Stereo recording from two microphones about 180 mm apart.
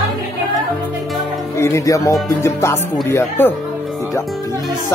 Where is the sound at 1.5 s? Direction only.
15° left (ahead or behind).